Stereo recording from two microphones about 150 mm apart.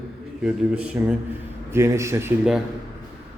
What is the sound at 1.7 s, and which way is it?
Speech, 20° right (ahead or behind).